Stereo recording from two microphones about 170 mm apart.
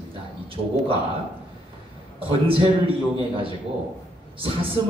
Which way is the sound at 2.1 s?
30° right (ahead or behind).